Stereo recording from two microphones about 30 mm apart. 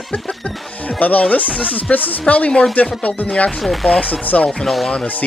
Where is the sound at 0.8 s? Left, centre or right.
Left.